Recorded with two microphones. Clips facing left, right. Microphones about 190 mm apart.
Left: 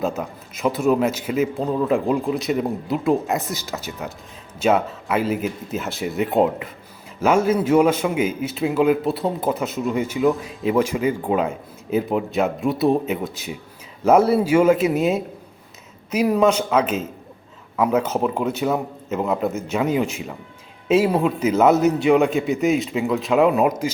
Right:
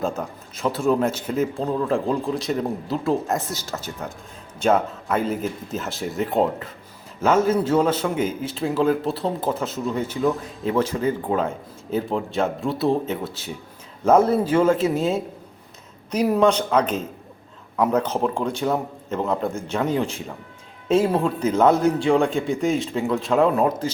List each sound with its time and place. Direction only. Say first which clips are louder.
0.0 s a man's voice: left 2 dB; 10° left (ahead or behind)
16.1 s a man's voice: left 1 dB; centre (ahead or behind)